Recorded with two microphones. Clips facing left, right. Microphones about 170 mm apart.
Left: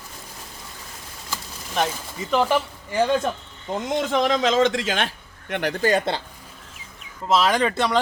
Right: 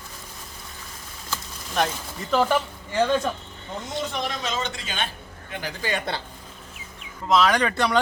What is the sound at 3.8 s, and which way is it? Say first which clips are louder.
Speech: left 8 dB; 90° left.